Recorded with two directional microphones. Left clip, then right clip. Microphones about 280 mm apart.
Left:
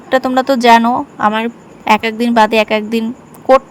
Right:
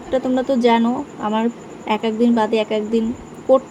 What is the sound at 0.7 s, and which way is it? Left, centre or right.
Speech, left.